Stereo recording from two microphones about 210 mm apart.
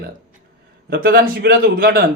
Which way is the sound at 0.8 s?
45° right (ahead or behind).